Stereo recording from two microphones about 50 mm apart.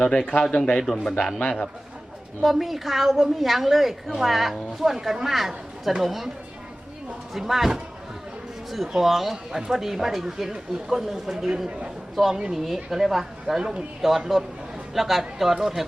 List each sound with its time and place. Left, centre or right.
0.0 s a man's voice: centre
2.4 s a woman's voice: centre
7.3 s a woman's voice: centre
12.4 s speech: centre
12.6 s a woman's voice: centre